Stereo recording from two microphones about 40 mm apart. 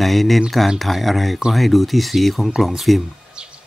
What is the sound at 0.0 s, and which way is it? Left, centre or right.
Speech, centre.